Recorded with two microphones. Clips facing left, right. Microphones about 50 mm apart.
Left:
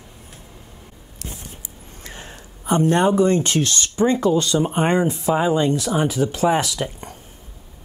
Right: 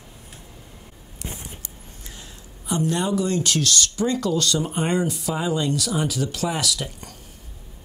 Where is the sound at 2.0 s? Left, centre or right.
Left.